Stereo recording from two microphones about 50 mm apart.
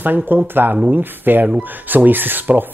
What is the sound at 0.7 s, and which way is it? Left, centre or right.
Speech, centre.